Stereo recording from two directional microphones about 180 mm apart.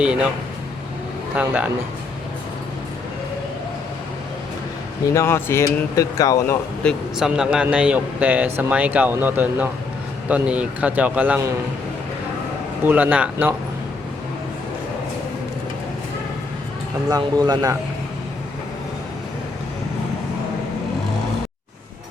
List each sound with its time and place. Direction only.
0.0 s a man's voice: 5° right (ahead or behind)
1.4 s speech: 10° right (ahead or behind)
5.1 s speech: 15° left (ahead or behind)
6.8 s a man's voice: 5° right (ahead or behind)
12.8 s speech: 10° right (ahead or behind)
17.1 s speech: 20° right (ahead or behind)